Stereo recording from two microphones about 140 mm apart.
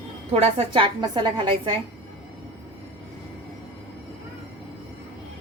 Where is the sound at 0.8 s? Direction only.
35° right (ahead or behind).